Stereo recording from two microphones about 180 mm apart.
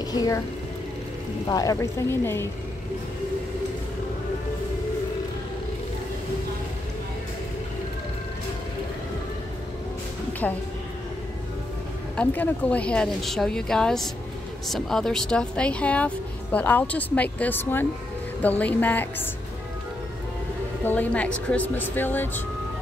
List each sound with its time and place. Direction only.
0.0 s speech: 20° left (ahead or behind)
1.5 s speech: 20° left (ahead or behind)
10.4 s speech: 10° left (ahead or behind)
12.2 s speech: 10° left (ahead or behind)
20.8 s speech: 10° left (ahead or behind)